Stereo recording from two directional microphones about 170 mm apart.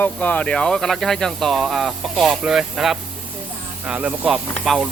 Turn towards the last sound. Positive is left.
turn(degrees=0)  # may be behind; listen again after turning